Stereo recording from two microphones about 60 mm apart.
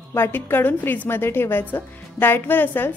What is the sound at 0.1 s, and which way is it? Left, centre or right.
A woman's voice, left.